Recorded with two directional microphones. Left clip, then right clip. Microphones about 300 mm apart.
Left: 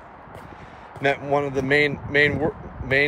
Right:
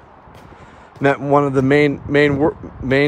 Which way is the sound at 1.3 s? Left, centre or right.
Right.